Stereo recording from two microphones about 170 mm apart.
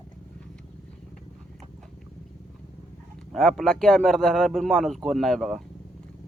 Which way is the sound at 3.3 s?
Centre (ahead or behind).